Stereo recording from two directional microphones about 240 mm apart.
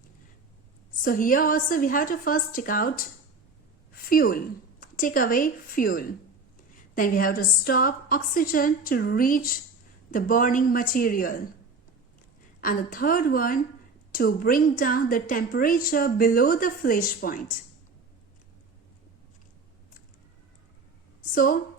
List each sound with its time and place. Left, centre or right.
1.0 s a woman's voice: left
4.1 s a woman's voice: left
12.6 s a woman's voice: left
21.3 s a woman's voice: left